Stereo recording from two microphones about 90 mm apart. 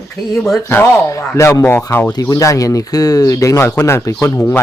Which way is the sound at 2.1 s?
40° left (ahead or behind).